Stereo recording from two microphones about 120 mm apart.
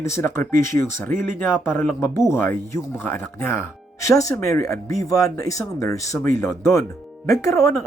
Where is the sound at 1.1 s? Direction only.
90° right.